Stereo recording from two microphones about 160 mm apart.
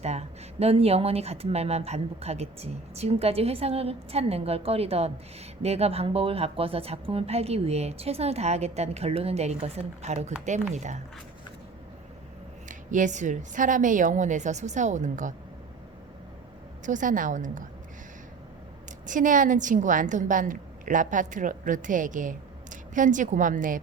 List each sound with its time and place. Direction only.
0.0 s a woman's voice: 40° right (ahead or behind)
12.6 s a woman's voice: 55° right (ahead or behind)
16.8 s a woman's voice: 55° right (ahead or behind)
19.0 s a woman's voice: 55° right (ahead or behind)